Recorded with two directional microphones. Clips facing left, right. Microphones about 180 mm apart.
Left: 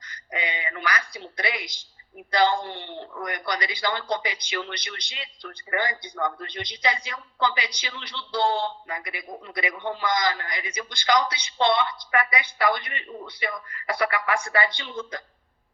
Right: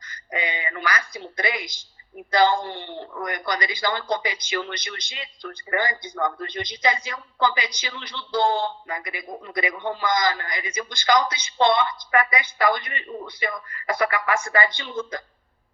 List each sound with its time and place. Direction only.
0.3 s a man's voice: 45° right (ahead or behind)
2.9 s a man's voice: 45° right (ahead or behind)